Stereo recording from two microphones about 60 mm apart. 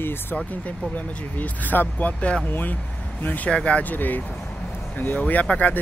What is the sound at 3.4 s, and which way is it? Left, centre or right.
Speech, centre.